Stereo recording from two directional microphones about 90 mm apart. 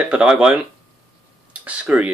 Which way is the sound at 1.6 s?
15° right (ahead or behind).